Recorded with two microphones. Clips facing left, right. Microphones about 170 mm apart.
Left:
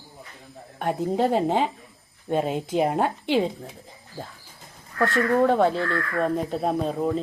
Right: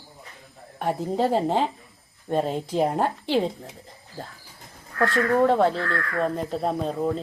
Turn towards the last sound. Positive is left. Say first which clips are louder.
# left 1 dB
turn(degrees=5)  # may be behind; listen again after turning